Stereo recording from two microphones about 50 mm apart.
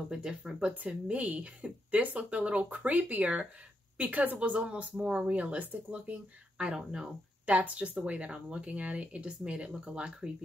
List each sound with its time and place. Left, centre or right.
0.1 s speech: centre
0.7 s a woman's voice: right
4.6 s speech: right
6.6 s speech: centre